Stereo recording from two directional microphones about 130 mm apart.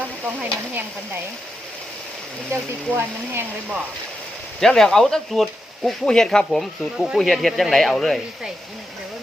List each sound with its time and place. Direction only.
0.5 s speech: 15° right (ahead or behind)
2.5 s speech: 15° right (ahead or behind)
4.6 s speech: 5° left (ahead or behind)